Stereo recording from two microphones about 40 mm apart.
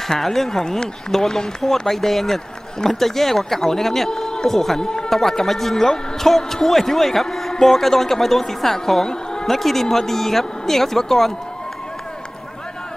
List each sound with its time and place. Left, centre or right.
0.2 s speech: centre
5.1 s speech: centre